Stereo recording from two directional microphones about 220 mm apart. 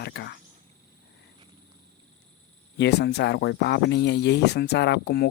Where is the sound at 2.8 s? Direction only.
50° left (ahead or behind).